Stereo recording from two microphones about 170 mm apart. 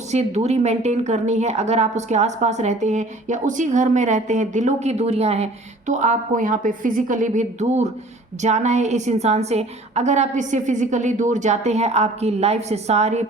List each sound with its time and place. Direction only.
0.1 s a woman's voice: 40° right (ahead or behind)